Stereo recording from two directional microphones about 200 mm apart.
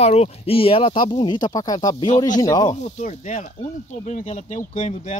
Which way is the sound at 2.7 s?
35° left (ahead or behind).